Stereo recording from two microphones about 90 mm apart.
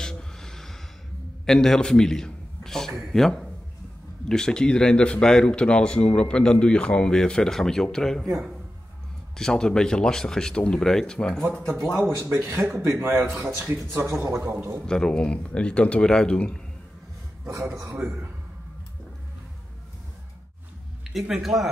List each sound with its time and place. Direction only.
0.0 s gasp: 5° left (ahead or behind)
1.4 s a man's voice: 5° left (ahead or behind)
9.4 s speech: 5° left (ahead or behind)
12.2 s a man's voice: 30° right (ahead or behind)
13.2 s speech: centre (ahead or behind)
14.4 s a man's voice: 30° right (ahead or behind)
14.9 s speech: 10° left (ahead or behind)
18.0 s a man's voice: 15° right (ahead or behind)
21.1 s speech: 5° right (ahead or behind)